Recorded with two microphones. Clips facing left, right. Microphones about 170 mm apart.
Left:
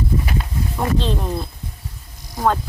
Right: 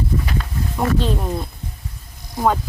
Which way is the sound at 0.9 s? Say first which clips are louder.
Right 1 dB; 10° right (ahead or behind).